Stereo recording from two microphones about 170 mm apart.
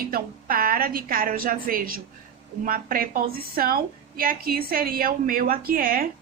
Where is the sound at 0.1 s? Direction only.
60° right (ahead or behind).